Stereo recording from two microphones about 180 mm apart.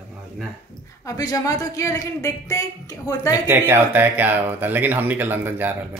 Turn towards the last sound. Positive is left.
turn(degrees=-10)  # may be behind; listen again after turning